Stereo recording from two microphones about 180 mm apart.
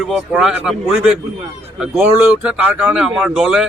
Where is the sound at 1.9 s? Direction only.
5° right (ahead or behind).